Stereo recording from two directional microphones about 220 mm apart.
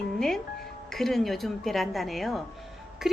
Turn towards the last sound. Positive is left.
turn(degrees=0)  # may be behind; listen again after turning